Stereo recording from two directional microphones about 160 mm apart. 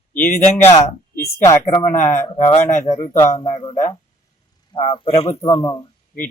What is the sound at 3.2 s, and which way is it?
Speech, 20° left (ahead or behind).